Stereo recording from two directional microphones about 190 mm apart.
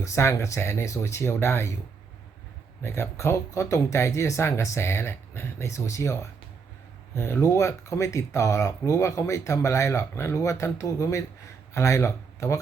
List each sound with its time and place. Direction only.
0.0 s speech: 15° left (ahead or behind)
2.8 s speech: 15° left (ahead or behind)